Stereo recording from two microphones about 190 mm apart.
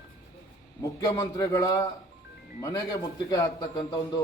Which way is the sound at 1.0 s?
20° left (ahead or behind).